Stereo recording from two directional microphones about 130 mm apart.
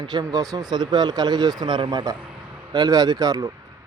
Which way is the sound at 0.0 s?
30° right (ahead or behind).